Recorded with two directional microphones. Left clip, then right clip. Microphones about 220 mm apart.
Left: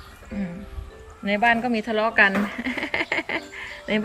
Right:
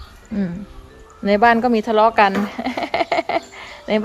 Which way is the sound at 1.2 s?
20° right (ahead or behind).